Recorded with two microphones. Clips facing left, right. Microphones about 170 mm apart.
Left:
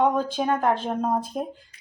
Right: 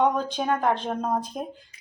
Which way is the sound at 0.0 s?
5° left (ahead or behind).